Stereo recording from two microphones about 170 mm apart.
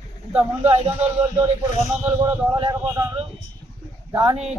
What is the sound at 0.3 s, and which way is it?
Speech, 10° right (ahead or behind).